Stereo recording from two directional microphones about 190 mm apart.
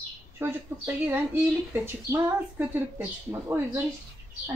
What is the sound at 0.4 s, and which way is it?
A woman's voice, 10° right (ahead or behind).